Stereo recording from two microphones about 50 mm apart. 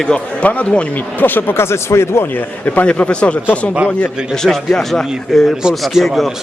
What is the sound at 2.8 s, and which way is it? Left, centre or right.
Speech, left.